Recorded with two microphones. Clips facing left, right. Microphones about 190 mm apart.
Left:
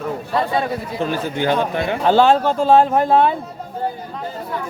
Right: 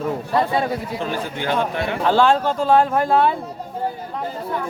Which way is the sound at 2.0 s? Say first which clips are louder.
Left 3 dB; 25° left (ahead or behind).